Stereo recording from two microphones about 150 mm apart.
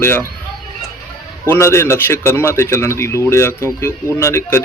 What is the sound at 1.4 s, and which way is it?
A man's voice, 15° left (ahead or behind).